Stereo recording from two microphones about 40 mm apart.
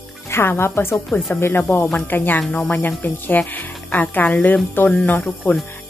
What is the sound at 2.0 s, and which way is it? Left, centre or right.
Speech, left.